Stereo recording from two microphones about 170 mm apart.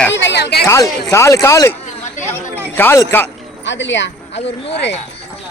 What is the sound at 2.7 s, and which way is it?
Speech, 15° left (ahead or behind).